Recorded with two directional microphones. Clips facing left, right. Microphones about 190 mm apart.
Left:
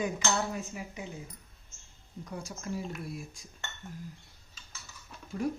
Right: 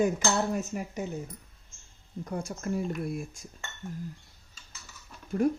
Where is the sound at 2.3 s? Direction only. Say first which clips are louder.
Right 6 dB; 55° right (ahead or behind).